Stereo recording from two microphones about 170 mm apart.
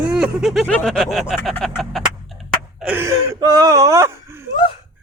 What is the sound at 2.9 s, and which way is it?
Whimper, 15° right (ahead or behind).